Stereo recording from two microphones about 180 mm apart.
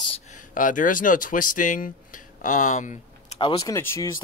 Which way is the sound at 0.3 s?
45° left (ahead or behind).